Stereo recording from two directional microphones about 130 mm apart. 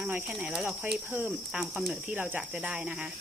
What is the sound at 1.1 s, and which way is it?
Speech, 15° right (ahead or behind).